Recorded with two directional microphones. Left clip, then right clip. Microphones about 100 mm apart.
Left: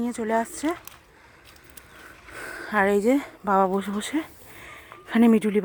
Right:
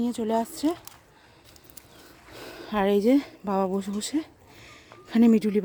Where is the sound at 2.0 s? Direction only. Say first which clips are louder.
Left 6 dB; 25° right (ahead or behind).